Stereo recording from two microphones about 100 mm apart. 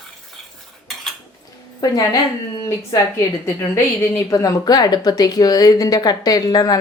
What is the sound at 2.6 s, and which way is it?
A woman's voice, 30° left (ahead or behind).